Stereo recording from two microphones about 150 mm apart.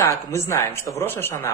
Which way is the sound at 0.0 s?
20° left (ahead or behind).